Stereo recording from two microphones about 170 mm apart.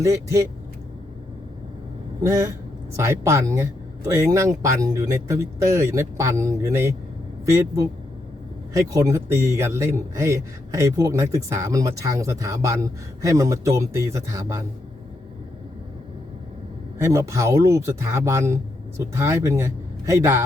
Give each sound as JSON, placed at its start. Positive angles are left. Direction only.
{"t": 0.0, "sound": "a man's voice", "side_deg": -20}
{"t": 2.2, "sound": "a man's voice", "side_deg": -15}
{"t": 8.9, "sound": "a man's voice", "side_deg": -15}
{"t": 17.0, "sound": "a man's voice", "side_deg": -20}